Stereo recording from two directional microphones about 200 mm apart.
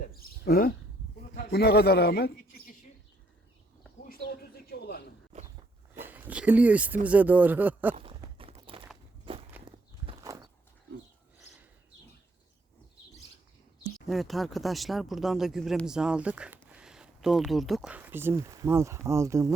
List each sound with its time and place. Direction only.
0.0 s a sound: 50° left (ahead or behind)
1.4 s a man's voice: 50° left (ahead or behind)
4.0 s bird: 50° left (ahead or behind)
5.9 s speech: 10° right (ahead or behind)
7.9 s walk: 25° right (ahead or behind)
14.1 s speech: centre (ahead or behind)